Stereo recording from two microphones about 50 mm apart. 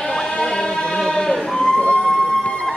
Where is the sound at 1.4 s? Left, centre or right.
Centre.